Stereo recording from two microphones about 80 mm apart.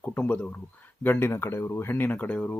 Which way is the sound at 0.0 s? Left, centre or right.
Left.